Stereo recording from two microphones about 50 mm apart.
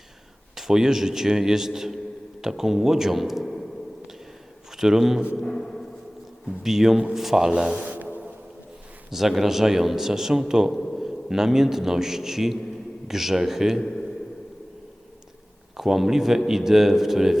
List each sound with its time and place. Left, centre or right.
0.5 s speech: centre
3.4 s a sound: centre
4.8 s speech: centre
5.4 s music: centre
6.6 s speech: centre
7.5 s speech: centre
9.0 s a man's voice: centre
15.8 s speech: centre